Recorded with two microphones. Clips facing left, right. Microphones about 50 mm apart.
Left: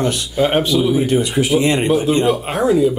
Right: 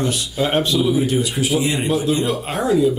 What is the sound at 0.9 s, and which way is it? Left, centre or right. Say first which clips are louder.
Speech: left 2 dB; left.